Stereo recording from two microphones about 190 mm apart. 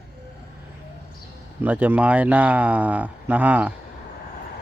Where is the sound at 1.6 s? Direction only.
10° right (ahead or behind).